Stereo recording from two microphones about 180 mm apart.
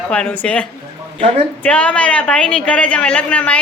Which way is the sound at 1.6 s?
10° left (ahead or behind).